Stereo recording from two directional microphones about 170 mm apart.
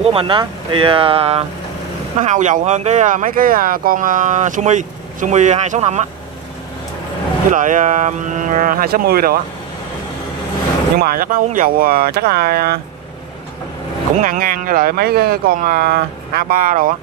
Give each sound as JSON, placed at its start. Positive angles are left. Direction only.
{"t": 0.0, "sound": "speech", "side_deg": -30}
{"t": 2.1, "sound": "speech", "side_deg": -45}
{"t": 7.5, "sound": "speech", "side_deg": -50}
{"t": 11.0, "sound": "speech", "side_deg": -60}
{"t": 14.2, "sound": "speech", "side_deg": -55}